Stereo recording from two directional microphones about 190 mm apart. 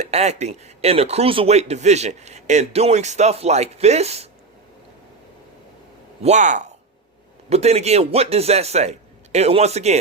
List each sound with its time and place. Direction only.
0.0 s speech: 35° right (ahead or behind)
6.2 s speech: 40° right (ahead or behind)